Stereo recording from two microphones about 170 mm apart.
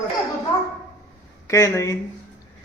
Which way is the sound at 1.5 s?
20° left (ahead or behind).